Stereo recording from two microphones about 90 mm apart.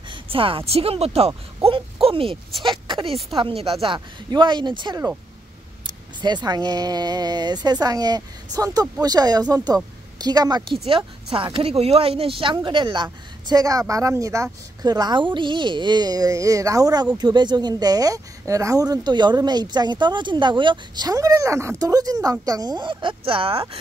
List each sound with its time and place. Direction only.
0.1 s speech: 90° right
2.6 s speech: 65° right (ahead or behind)
3.3 s speech: 85° right
3.8 s speech: 60° right (ahead or behind)
6.2 s speech: 50° right (ahead or behind)
10.9 s speech: 75° right (ahead or behind)